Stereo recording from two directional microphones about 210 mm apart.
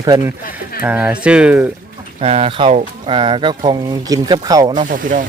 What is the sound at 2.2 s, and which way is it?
Speech, 30° right (ahead or behind).